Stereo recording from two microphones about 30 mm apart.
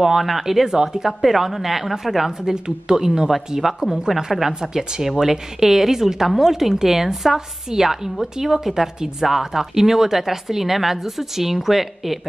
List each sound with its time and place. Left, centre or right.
0.2 s a woman's voice: centre
2.5 s speech: right
3.6 s a woman's voice: centre
4.5 s a woman's voice: right